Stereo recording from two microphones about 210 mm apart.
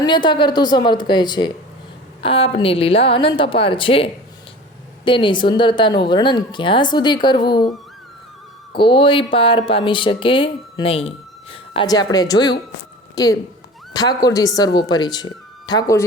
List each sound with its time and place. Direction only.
0.0 s speech: 20° left (ahead or behind)
8.8 s a woman's voice: 25° left (ahead or behind)